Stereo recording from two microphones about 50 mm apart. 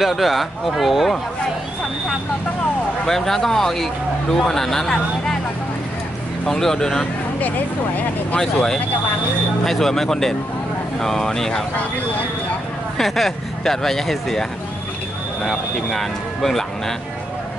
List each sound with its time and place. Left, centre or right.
0.0 s speech: centre
3.1 s speech: centre
6.4 s speech: centre
7.3 s speech: left
8.4 s speech: centre
12.9 s speech: centre
15.4 s speech: centre